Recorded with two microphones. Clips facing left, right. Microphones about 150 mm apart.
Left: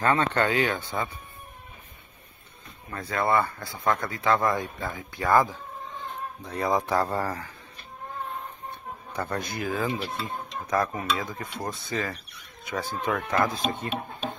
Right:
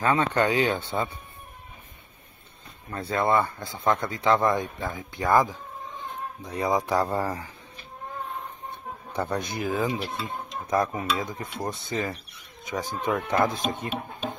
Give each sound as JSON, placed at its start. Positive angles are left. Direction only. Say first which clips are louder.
{"t": 0.0, "sound": "speech", "louder": "right 1 dB", "side_deg": -15}
{"t": 2.9, "sound": "speech", "louder": "right 3 dB", "side_deg": -30}
{"t": 3.2, "sound": "speech", "louder": "right 1 dB", "side_deg": -15}
{"t": 9.1, "sound": "speech", "louder": "right 2 dB", "side_deg": -20}